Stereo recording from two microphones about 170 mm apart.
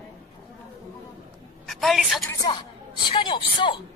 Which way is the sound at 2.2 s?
25° left (ahead or behind).